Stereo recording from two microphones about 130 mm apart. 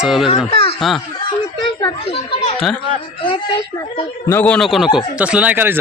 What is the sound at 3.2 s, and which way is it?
Speech, 35° left (ahead or behind).